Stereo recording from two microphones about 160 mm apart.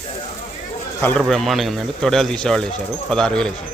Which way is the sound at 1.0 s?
5° left (ahead or behind).